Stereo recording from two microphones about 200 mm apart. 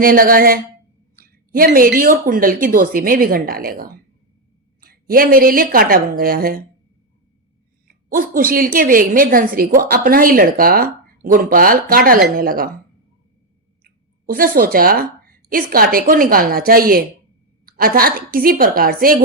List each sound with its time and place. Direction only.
0.0 s a woman's voice: 45° right (ahead or behind)
7.9 s a woman's voice: 45° right (ahead or behind)
13.8 s a woman's voice: 45° right (ahead or behind)